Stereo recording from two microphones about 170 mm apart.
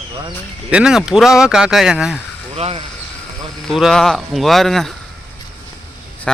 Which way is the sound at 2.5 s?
35° right (ahead or behind).